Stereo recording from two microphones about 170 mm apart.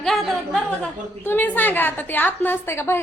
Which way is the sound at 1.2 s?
10° left (ahead or behind).